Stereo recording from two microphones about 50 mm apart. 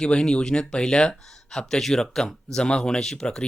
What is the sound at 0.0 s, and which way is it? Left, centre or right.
Speech, centre.